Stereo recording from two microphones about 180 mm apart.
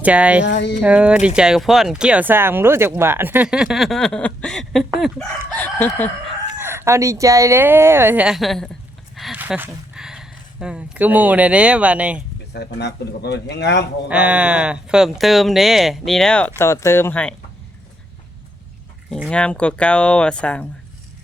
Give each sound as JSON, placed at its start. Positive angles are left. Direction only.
{"t": 0.0, "sound": "speech", "side_deg": -5}
{"t": 0.4, "sound": "speech", "side_deg": 75}
{"t": 0.8, "sound": "speech", "side_deg": -5}
{"t": 6.6, "sound": "speech", "side_deg": -15}
{"t": 12.5, "sound": "speech", "side_deg": 70}
{"t": 14.1, "sound": "speech", "side_deg": -5}
{"t": 16.6, "sound": "speech", "side_deg": 15}
{"t": 19.1, "sound": "speech", "side_deg": 5}